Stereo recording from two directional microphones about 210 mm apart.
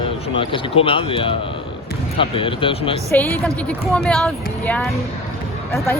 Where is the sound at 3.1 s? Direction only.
10° left (ahead or behind).